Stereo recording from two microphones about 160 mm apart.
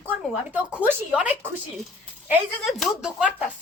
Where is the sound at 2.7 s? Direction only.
Centre (ahead or behind).